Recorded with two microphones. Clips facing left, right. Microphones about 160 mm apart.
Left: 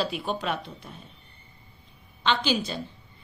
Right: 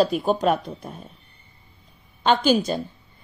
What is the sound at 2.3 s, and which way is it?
Speech, 45° right (ahead or behind).